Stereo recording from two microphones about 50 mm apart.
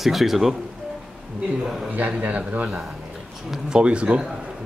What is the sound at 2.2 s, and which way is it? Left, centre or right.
Speech, right.